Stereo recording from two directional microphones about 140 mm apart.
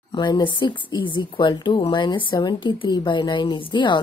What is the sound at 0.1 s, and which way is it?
Speech, 30° left (ahead or behind).